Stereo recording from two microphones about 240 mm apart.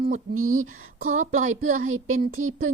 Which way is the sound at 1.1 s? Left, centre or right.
Right.